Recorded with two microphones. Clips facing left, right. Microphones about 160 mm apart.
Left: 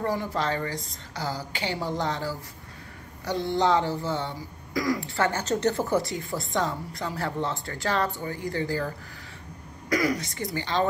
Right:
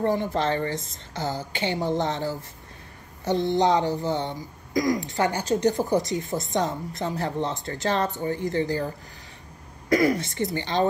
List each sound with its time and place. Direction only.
0.0 s speech: 25° right (ahead or behind)